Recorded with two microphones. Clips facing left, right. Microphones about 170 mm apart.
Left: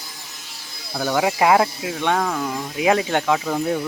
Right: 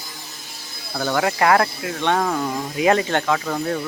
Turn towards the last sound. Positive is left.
turn(degrees=10)  # may be behind; listen again after turning